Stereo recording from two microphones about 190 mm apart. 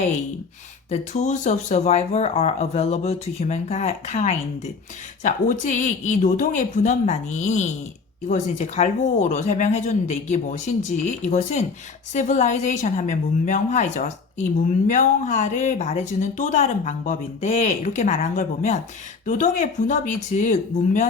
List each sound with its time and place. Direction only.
0.9 s a woman's voice: 35° left (ahead or behind)